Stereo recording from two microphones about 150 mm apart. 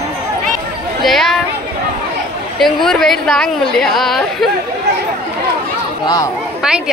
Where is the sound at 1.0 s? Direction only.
Centre (ahead or behind).